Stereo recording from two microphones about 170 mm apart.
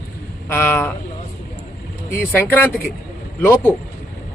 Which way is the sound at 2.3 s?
10° left (ahead or behind).